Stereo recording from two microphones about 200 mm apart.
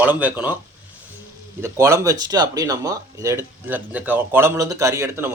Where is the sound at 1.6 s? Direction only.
15° right (ahead or behind).